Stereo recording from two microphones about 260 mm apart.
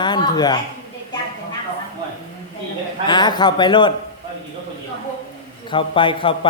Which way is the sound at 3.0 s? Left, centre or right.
Centre.